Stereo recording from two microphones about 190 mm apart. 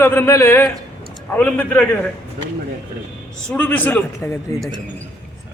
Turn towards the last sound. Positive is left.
turn(degrees=15)  # may be behind; listen again after turning